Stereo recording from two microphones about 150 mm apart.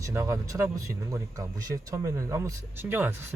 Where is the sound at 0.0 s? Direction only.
20° right (ahead or behind).